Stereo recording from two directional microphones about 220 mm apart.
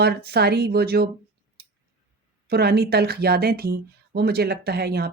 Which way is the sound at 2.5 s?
45° right (ahead or behind).